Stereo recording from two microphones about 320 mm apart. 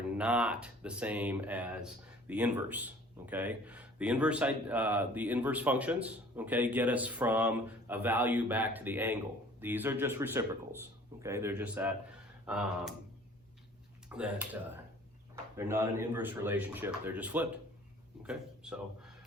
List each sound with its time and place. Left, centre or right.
0.0 s speech: centre
14.1 s speech: centre